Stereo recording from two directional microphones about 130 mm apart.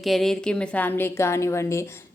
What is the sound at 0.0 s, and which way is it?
A woman's voice, centre (ahead or behind).